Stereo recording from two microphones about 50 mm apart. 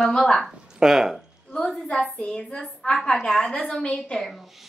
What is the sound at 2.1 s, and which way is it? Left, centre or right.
A woman's voice, centre.